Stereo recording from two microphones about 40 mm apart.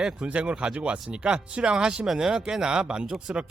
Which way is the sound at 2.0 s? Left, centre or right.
Centre.